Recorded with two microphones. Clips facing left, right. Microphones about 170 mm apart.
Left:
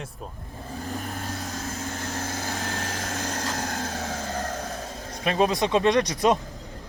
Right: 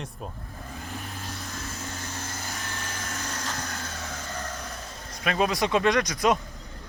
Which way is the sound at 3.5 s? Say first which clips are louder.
Left 6 dB; 65° left (ahead or behind).